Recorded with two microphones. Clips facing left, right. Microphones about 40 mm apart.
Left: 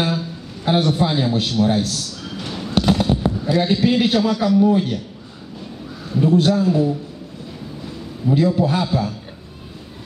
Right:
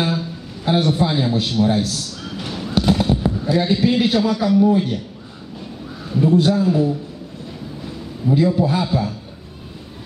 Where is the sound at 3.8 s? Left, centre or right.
Centre.